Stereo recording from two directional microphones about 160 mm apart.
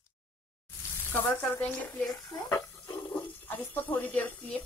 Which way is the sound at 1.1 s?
10° left (ahead or behind).